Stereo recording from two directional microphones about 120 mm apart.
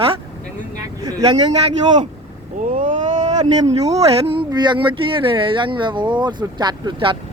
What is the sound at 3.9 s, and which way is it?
Speech, 50° right (ahead or behind).